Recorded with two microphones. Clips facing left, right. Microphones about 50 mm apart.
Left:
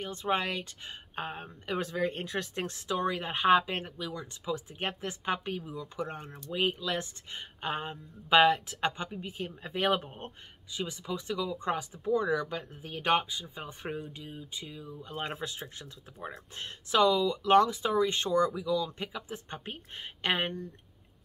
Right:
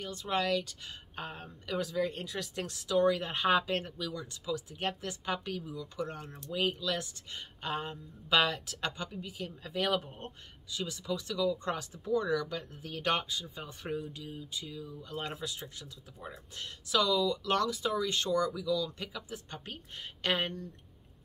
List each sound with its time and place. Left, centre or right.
0.0 s speech: left